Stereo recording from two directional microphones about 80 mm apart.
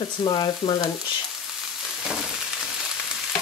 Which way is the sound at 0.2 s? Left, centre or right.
Left.